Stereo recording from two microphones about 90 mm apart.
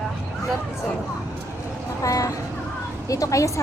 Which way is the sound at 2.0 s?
40° left (ahead or behind).